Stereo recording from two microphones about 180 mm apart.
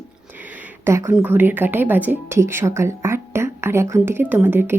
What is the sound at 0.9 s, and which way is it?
A woman's voice, 15° right (ahead or behind).